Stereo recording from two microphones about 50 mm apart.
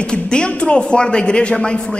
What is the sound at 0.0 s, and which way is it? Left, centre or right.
A man's voice, centre.